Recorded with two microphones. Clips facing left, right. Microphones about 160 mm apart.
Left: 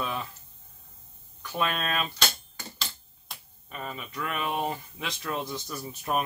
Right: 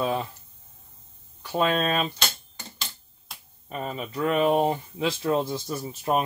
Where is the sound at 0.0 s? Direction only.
35° right (ahead or behind).